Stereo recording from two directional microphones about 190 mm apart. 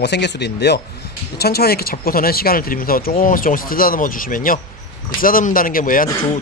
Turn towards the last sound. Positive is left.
turn(degrees=45)  # may be behind; listen again after turning